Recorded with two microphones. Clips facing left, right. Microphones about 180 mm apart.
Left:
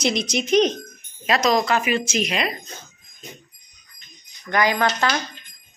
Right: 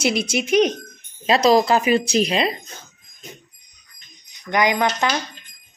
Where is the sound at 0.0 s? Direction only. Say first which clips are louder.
Right 2 dB; 5° right (ahead or behind).